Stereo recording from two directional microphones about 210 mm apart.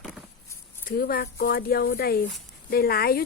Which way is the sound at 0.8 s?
45° left (ahead or behind).